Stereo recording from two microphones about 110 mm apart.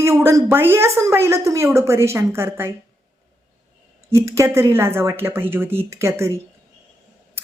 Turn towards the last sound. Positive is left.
turn(degrees=-25)  # may be behind; listen again after turning